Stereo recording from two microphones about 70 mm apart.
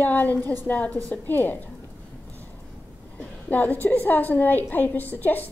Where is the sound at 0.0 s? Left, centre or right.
Left.